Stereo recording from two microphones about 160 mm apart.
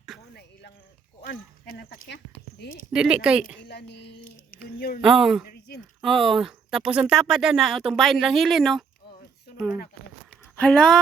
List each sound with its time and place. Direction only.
0.1 s cricket: centre (ahead or behind)
1.2 s a sound: 75° left (ahead or behind)
2.9 s speech: 5° right (ahead or behind)
3.7 s a sound: 90° left; by 4.9 s 70° left (ahead or behind)
5.0 s speech: 5° right (ahead or behind)
10.5 s speech: 5° left (ahead or behind)